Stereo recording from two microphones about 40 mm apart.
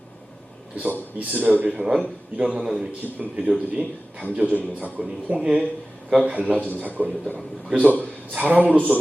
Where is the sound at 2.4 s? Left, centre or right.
Right.